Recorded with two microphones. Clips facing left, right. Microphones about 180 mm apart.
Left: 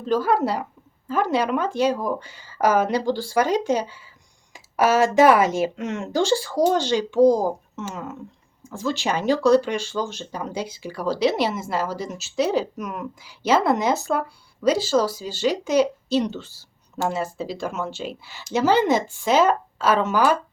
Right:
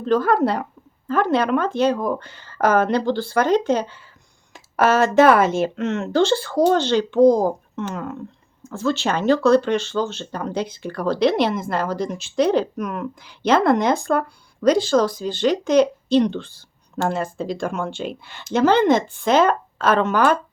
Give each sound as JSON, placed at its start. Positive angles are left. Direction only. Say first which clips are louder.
{"t": 0.0, "sound": "speech", "louder": "right 3 dB", "side_deg": 5}